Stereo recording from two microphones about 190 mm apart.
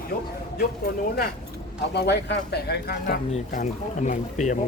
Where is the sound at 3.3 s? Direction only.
40° left (ahead or behind).